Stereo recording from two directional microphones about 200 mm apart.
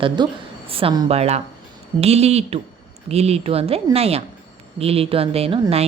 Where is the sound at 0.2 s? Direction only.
20° right (ahead or behind).